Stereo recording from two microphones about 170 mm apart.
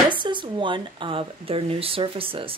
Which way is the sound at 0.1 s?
30° right (ahead or behind).